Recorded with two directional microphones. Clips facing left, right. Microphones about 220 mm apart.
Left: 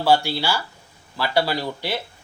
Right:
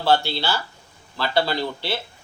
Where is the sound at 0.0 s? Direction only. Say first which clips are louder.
Left 1 dB; 10° left (ahead or behind).